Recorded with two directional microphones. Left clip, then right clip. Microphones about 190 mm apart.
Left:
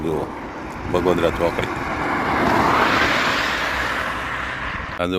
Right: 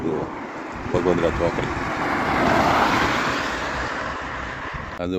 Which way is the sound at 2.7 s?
60° right (ahead or behind).